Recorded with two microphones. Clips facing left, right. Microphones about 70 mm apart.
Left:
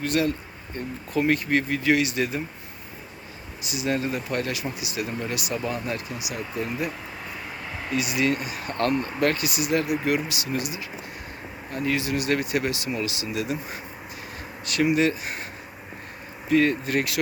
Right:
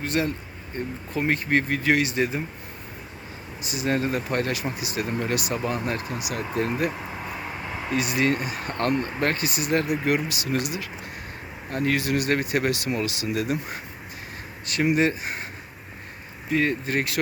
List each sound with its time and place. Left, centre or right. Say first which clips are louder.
0.0 s speech: left 2 dB; right
3.6 s speech: right 1 dB; right
7.9 s speech: right 1 dB; right
10.6 s speech: right 2 dB; right
11.7 s speech: right 2 dB; right
12.7 s speech: right 2 dB; right
14.7 s speech: even; right
16.5 s speech: left 3 dB; right